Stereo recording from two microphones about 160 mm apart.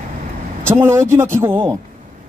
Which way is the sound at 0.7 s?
15° right (ahead or behind).